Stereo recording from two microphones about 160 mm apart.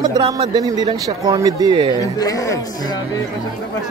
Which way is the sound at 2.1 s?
20° left (ahead or behind).